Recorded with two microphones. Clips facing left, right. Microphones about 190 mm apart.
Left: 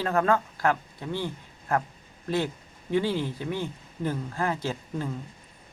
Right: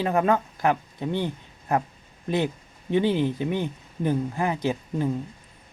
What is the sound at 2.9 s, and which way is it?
Speech, 20° right (ahead or behind).